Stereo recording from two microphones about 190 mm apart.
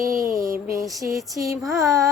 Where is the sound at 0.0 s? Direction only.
15° right (ahead or behind).